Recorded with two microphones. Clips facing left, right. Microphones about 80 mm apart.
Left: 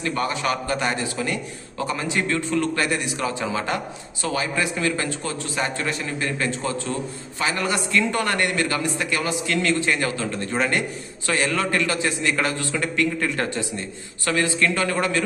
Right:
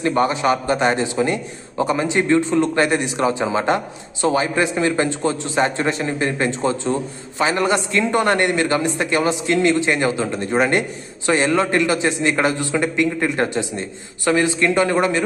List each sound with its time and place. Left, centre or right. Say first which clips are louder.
0.0 s a man's voice: right 7 dB; right